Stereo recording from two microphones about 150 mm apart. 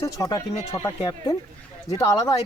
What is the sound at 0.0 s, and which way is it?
Speech, 25° left (ahead or behind).